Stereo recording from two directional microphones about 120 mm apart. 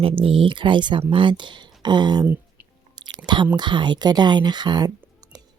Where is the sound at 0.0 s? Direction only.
50° right (ahead or behind).